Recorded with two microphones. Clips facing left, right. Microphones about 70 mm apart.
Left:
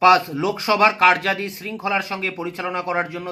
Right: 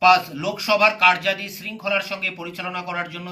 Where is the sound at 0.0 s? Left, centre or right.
Left.